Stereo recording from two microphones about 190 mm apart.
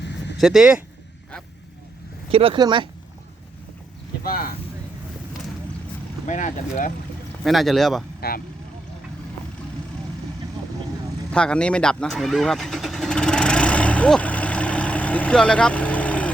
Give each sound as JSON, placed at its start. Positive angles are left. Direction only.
{"t": 0.0, "sound": "a sound", "side_deg": 65}
{"t": 0.3, "sound": "speech", "side_deg": 0}
{"t": 2.3, "sound": "speech", "side_deg": -30}
{"t": 4.2, "sound": "speech", "side_deg": 50}
{"t": 6.2, "sound": "speech", "side_deg": 40}
{"t": 7.4, "sound": "speech", "side_deg": 0}
{"t": 8.2, "sound": "speech", "side_deg": 55}
{"t": 11.3, "sound": "engine starting", "side_deg": 5}